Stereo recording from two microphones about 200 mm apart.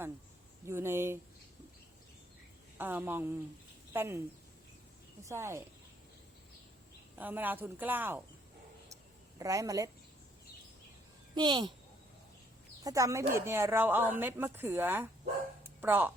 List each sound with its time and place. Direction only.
0.6 s speech: 10° right (ahead or behind)
2.7 s speech: 10° right (ahead or behind)
5.2 s speech: 15° right (ahead or behind)
7.2 s speech: 10° right (ahead or behind)
9.4 s speech: 15° right (ahead or behind)
11.3 s speech: 20° right (ahead or behind)
12.8 s speech: 15° right (ahead or behind)